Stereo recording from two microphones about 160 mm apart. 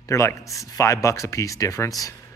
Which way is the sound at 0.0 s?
20° left (ahead or behind).